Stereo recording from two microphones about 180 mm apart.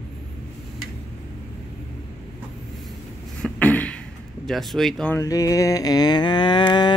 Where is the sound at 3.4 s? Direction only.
10° left (ahead or behind).